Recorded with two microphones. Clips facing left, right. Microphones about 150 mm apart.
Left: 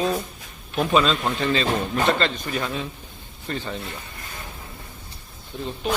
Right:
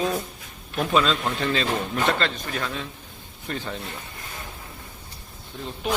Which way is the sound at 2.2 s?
5° left (ahead or behind).